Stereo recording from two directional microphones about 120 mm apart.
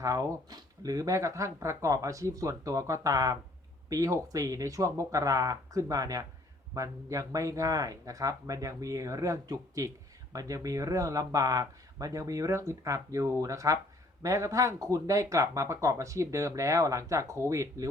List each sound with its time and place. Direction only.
0.0 s speech: 30° right (ahead or behind)